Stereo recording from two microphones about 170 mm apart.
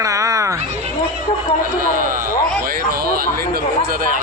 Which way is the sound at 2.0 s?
55° right (ahead or behind).